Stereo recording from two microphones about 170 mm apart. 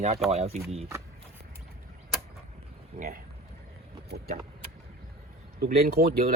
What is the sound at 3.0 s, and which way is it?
Speech, 55° right (ahead or behind).